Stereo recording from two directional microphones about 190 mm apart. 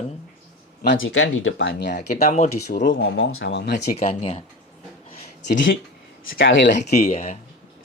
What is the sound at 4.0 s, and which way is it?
Speech, 35° left (ahead or behind).